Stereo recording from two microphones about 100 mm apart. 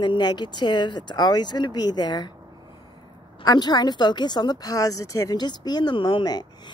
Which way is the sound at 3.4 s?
45° left (ahead or behind).